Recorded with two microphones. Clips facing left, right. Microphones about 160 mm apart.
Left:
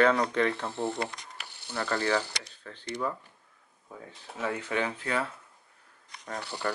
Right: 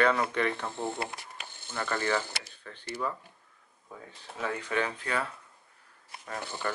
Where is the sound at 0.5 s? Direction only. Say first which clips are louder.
Left 2 dB; 15° left (ahead or behind).